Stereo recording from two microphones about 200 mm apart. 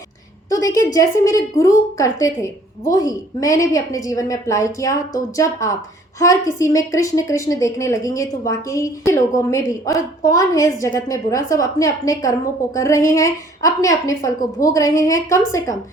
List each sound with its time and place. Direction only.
0.5 s a woman's voice: 15° left (ahead or behind)